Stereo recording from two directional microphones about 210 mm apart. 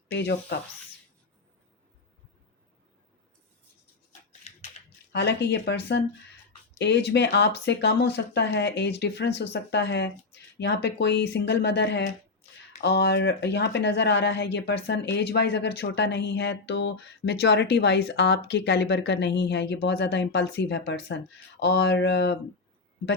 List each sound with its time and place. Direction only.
0.1 s speech: 55° left (ahead or behind)
5.1 s speech: 55° left (ahead or behind)